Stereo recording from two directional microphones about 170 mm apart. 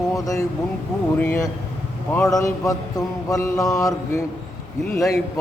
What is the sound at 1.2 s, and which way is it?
A man's voice, 10° left (ahead or behind).